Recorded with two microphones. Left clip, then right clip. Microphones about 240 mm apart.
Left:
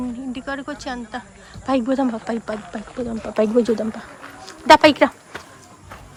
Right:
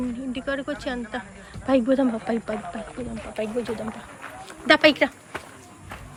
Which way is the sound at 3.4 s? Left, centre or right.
Left.